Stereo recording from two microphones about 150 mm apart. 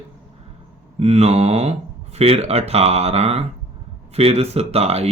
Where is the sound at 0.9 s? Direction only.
45° right (ahead or behind).